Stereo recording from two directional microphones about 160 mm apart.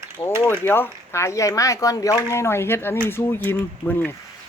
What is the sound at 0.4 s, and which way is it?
Speech, 15° left (ahead or behind).